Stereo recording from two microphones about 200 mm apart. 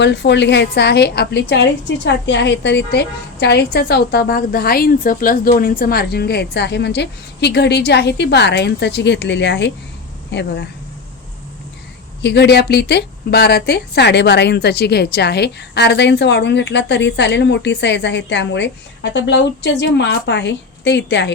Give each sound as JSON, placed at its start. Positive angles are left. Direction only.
{"t": 0.0, "sound": "a woman's voice", "side_deg": 60}
{"t": 12.2, "sound": "a woman's voice", "side_deg": 60}